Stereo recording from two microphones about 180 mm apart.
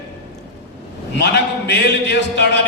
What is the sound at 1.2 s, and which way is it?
A man's voice, 75° left (ahead or behind).